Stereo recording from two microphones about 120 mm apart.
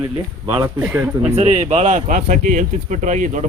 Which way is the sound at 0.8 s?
15° right (ahead or behind).